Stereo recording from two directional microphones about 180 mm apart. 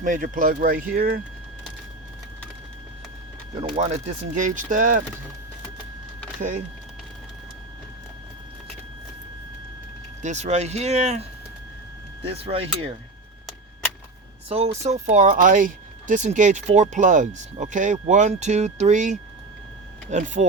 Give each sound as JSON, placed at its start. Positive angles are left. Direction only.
{"t": 0.0, "sound": "speech", "side_deg": -45}
{"t": 3.6, "sound": "speech", "side_deg": -40}
{"t": 10.2, "sound": "speech", "side_deg": -40}
{"t": 14.5, "sound": "speech", "side_deg": -40}